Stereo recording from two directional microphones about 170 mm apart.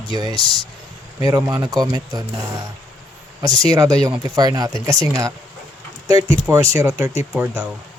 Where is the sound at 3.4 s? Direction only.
25° right (ahead or behind).